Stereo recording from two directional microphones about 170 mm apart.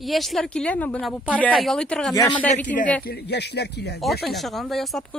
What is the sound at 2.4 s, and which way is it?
Speech, 10° left (ahead or behind).